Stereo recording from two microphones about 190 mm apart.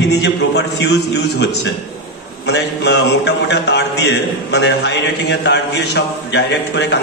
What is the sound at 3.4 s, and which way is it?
A man's voice, 60° left (ahead or behind).